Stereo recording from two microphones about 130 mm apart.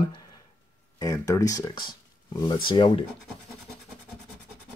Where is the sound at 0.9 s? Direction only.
25° left (ahead or behind).